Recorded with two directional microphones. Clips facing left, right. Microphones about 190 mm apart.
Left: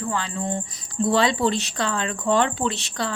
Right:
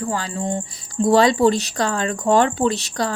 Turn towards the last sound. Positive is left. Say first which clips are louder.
# right 6 dB
turn(degrees=-40)  # may be behind; listen again after turning